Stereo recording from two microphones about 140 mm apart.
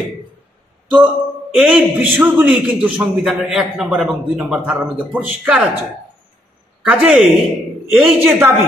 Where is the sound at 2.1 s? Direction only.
15° right (ahead or behind).